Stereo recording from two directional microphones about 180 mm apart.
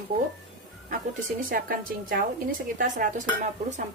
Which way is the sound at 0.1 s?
30° right (ahead or behind).